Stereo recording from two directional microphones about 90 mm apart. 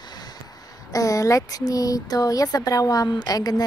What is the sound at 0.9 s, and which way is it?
A woman's voice, 40° left (ahead or behind).